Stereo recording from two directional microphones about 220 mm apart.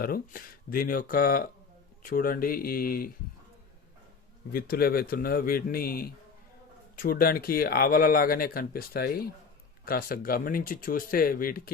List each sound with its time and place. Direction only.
0.0 s speech: 40° left (ahead or behind)
4.5 s speech: 45° left (ahead or behind)